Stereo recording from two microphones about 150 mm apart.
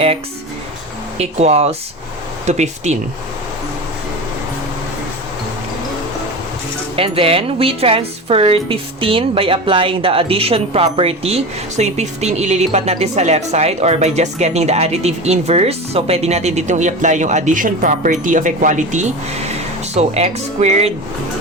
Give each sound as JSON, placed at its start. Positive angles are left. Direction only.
{"t": 1.2, "sound": "a woman's voice", "side_deg": -45}
{"t": 6.9, "sound": "a woman's voice", "side_deg": -40}